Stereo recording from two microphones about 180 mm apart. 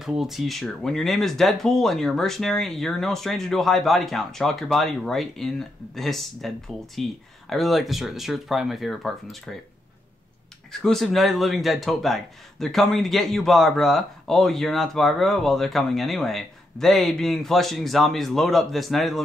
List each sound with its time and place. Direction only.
0.0 s speech: centre (ahead or behind)
10.7 s speech: 5° left (ahead or behind)